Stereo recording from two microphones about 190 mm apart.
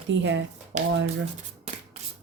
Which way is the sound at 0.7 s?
40° right (ahead or behind).